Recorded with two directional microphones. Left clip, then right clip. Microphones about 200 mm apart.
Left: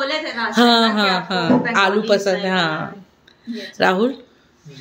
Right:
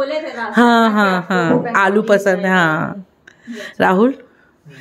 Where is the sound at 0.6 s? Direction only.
30° right (ahead or behind).